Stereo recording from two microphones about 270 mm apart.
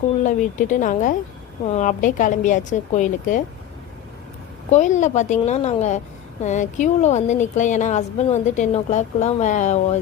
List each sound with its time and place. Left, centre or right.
0.3 s speech: left
4.7 s speech: left